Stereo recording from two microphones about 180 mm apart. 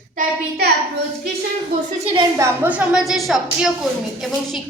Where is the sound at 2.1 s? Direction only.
20° right (ahead or behind).